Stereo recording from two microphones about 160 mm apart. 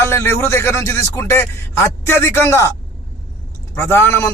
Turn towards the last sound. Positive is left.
turn(degrees=15)  # may be behind; listen again after turning